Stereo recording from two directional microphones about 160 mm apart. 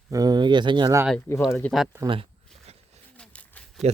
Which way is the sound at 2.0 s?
35° right (ahead or behind).